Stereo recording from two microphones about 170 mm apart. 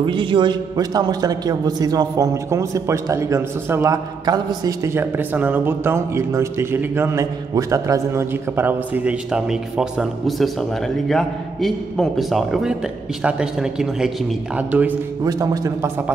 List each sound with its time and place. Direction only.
0.0 s a man's voice: 30° right (ahead or behind); by 15.0 s 10° right (ahead or behind)
15.2 s a man's voice: 20° right (ahead or behind)